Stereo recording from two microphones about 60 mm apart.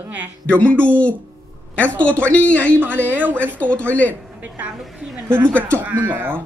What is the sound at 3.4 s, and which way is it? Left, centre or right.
Speech, left.